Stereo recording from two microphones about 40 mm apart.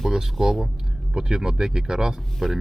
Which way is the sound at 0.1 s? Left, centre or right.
Centre.